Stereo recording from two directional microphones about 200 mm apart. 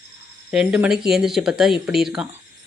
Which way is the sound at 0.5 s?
5° right (ahead or behind).